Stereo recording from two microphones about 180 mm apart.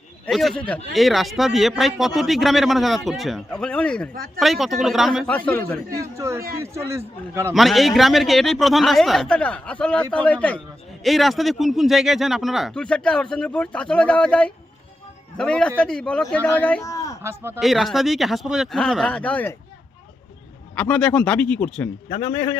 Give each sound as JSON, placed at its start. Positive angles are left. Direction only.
{"t": 0.3, "sound": "speech", "side_deg": 0}
{"t": 6.0, "sound": "a man's voice", "side_deg": -15}
{"t": 7.5, "sound": "speech", "side_deg": 0}
{"t": 16.8, "sound": "a sound", "side_deg": 20}
{"t": 17.2, "sound": "a man's voice", "side_deg": -15}
{"t": 17.6, "sound": "speech", "side_deg": 0}
{"t": 20.7, "sound": "speech", "side_deg": 5}